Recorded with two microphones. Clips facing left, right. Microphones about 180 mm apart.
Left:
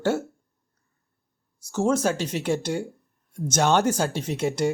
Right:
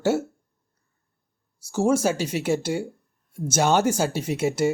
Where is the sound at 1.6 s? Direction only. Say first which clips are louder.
Right 2 dB; 10° right (ahead or behind).